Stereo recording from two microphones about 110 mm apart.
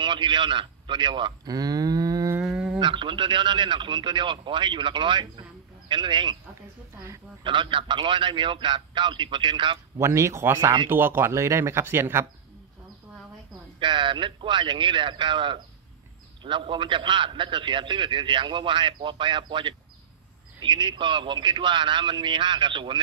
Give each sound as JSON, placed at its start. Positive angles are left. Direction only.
{"t": 0.0, "sound": "speech", "side_deg": -45}
{"t": 2.4, "sound": "a sound", "side_deg": -5}
{"t": 2.8, "sound": "a man's voice", "side_deg": -50}
{"t": 7.4, "sound": "a man's voice", "side_deg": -50}
{"t": 9.9, "sound": "speech", "side_deg": -25}
{"t": 13.7, "sound": "a man's voice", "side_deg": -45}